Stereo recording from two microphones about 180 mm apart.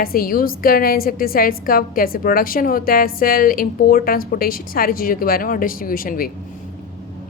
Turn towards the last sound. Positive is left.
turn(degrees=50)  # may be behind; listen again after turning